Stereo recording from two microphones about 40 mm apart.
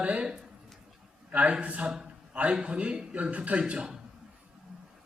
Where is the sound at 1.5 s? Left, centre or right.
Right.